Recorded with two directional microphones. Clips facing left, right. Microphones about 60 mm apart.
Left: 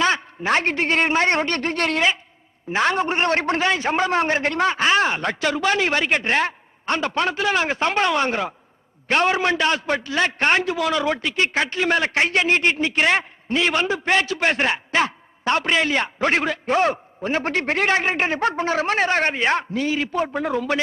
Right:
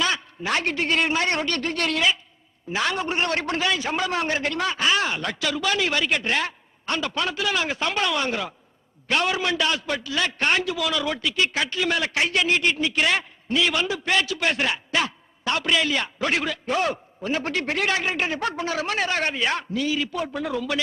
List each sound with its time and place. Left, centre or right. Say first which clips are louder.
0.0 s a man's voice: left 5 dB; left